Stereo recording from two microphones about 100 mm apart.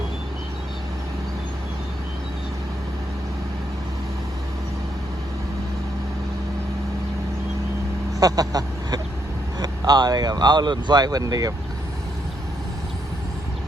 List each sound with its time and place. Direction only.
8.2 s vehicle: 40° right (ahead or behind)
9.6 s speech: 45° right (ahead or behind)